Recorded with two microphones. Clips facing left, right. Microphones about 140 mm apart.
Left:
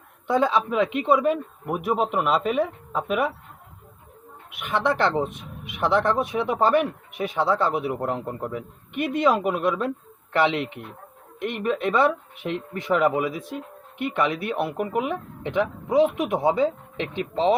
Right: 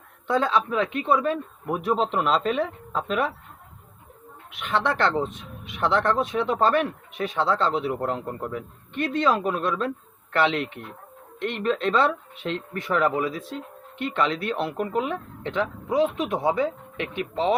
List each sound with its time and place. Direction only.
0.3 s speech: 15° left (ahead or behind)
4.5 s speech: 10° left (ahead or behind)